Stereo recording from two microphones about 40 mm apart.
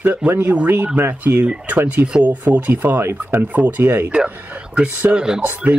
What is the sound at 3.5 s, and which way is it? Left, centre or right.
Speech, right.